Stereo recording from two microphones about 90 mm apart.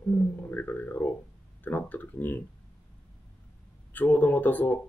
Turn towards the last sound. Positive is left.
turn(degrees=20)  # may be behind; listen again after turning